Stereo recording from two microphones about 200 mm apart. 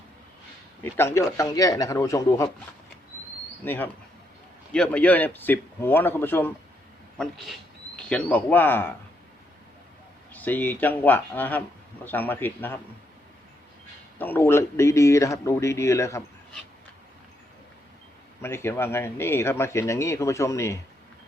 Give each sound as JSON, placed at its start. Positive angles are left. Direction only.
{"t": 0.9, "sound": "speech", "side_deg": 15}
{"t": 3.6, "sound": "speech", "side_deg": 10}
{"t": 10.3, "sound": "speech", "side_deg": 10}
{"t": 14.2, "sound": "speech", "side_deg": 10}
{"t": 18.4, "sound": "speech", "side_deg": 10}